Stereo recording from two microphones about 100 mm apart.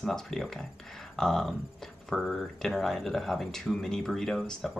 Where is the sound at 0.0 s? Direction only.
5° left (ahead or behind).